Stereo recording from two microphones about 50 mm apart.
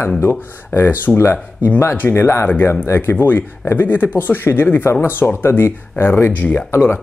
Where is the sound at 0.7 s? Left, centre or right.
Left.